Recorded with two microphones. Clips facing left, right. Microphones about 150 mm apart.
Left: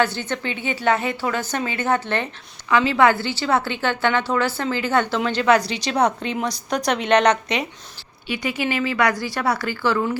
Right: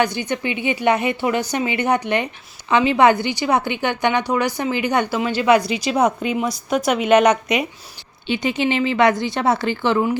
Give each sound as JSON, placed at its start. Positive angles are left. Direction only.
{"t": 0.0, "sound": "a woman's voice", "side_deg": -15}
{"t": 8.3, "sound": "speech", "side_deg": -25}